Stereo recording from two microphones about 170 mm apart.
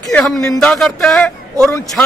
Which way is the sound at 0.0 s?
5° left (ahead or behind).